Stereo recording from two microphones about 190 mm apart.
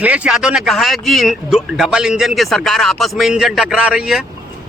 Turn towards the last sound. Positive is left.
turn(degrees=-5)  # may be behind; listen again after turning